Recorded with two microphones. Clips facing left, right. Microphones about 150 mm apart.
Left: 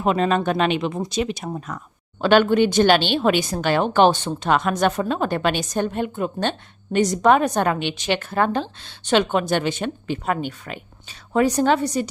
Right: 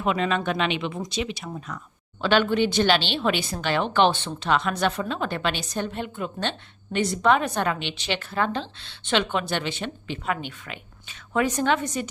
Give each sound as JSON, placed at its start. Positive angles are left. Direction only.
{"t": 0.0, "sound": "a woman's voice", "side_deg": 40}